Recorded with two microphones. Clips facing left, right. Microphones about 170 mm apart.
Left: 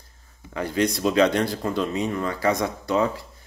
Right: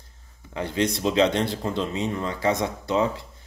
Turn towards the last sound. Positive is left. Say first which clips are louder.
# left 1 dB
turn(degrees=-20)  # may be behind; listen again after turning